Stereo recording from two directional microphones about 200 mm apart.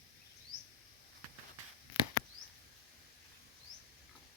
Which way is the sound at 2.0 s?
25° left (ahead or behind).